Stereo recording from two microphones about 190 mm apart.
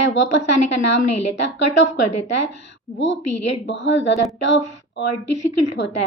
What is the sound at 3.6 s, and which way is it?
A woman's voice, 70° left (ahead or behind).